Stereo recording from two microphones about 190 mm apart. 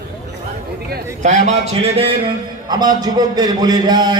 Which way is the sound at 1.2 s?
35° right (ahead or behind).